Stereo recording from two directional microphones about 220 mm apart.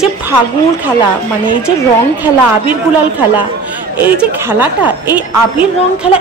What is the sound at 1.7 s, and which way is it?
Speech, 20° left (ahead or behind).